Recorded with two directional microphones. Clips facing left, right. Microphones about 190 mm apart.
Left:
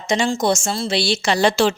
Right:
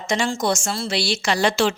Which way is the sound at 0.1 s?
20° left (ahead or behind).